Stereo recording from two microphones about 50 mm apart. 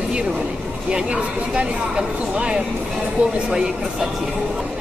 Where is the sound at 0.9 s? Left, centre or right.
Right.